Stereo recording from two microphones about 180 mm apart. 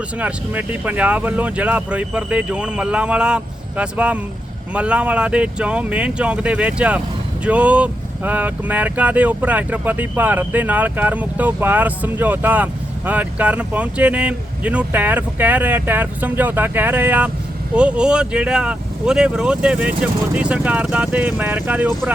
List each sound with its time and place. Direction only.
0.2 s speech: 5° right (ahead or behind)